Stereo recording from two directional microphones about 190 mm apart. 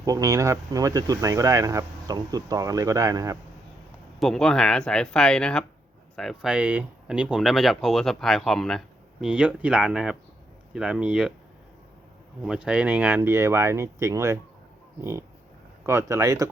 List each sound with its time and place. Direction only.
0.0 s speech: 20° right (ahead or behind)
4.2 s speech: 5° left (ahead or behind)
12.4 s speech: 5° right (ahead or behind)
15.9 s speech: 15° right (ahead or behind)